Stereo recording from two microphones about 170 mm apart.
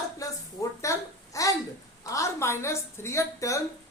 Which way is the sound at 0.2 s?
20° left (ahead or behind).